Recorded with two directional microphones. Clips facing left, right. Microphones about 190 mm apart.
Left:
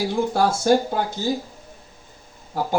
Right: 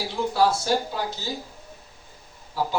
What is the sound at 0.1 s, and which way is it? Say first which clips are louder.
A man's voice: left 2 dB; 50° left (ahead or behind).